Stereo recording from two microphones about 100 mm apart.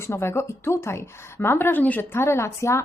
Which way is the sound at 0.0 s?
25° left (ahead or behind).